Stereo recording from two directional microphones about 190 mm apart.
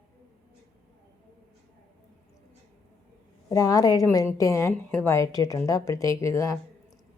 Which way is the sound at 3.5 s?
20° left (ahead or behind).